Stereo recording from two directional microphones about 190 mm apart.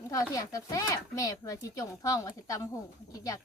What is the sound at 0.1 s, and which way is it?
Speech, 15° left (ahead or behind).